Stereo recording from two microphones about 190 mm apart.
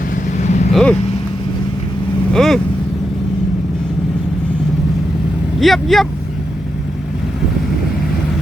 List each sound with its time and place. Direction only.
0.3 s vehicle: 40° left (ahead or behind)
0.7 s vehicle: 5° left (ahead or behind)
2.3 s speech: centre (ahead or behind)
5.5 s speech: centre (ahead or behind)